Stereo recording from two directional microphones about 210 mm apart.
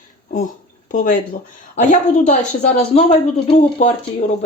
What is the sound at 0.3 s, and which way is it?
A woman's voice, 40° left (ahead or behind).